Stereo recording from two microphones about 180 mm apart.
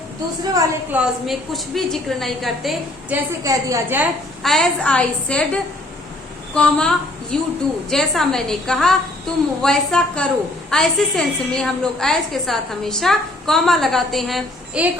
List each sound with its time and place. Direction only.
0.5 s a woman's voice: 20° right (ahead or behind)
0.9 s a woman's voice: centre (ahead or behind)
3.4 s a woman's voice: 20° right (ahead or behind)
4.4 s a woman's voice: 5° left (ahead or behind)